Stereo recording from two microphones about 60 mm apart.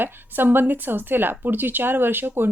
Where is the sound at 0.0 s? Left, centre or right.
Right.